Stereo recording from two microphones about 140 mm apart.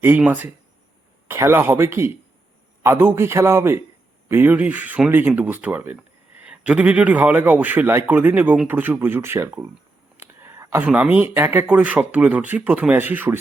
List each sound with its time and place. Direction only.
0.0 s speech: 15° right (ahead or behind)